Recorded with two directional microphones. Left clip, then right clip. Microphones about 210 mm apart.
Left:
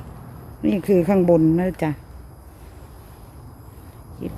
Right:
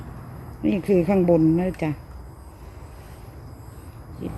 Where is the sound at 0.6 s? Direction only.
15° left (ahead or behind).